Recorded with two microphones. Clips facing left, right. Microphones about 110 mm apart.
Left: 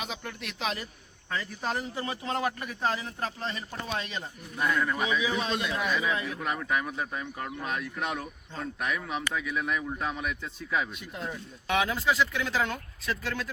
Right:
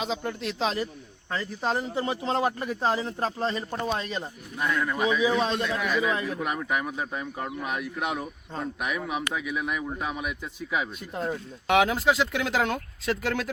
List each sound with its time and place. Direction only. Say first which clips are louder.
0.0 s speech: right 7 dB; 25° right (ahead or behind)
4.8 s speech: right 1 dB; 10° right (ahead or behind)
5.4 s speech: right 4 dB; 35° right (ahead or behind)
6.4 s speech: right 2 dB; 15° right (ahead or behind)
11.0 s speech: right 6 dB; 40° right (ahead or behind)
11.7 s speech: right 5 dB; 70° right (ahead or behind)